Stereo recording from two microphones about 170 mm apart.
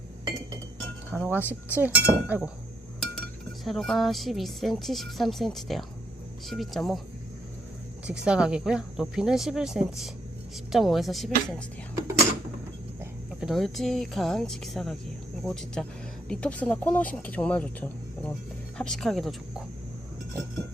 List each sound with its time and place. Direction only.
1.3 s speech: 10° right (ahead or behind)
3.2 s speech: centre (ahead or behind)
8.0 s speech: 5° right (ahead or behind)
11.9 s drawer open or close: 15° right (ahead or behind)
13.4 s speech: centre (ahead or behind)